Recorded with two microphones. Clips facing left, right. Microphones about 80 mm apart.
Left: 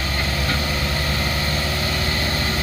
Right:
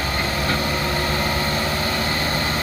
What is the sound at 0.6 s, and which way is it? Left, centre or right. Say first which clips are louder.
Vehicle: right 2 dB; right.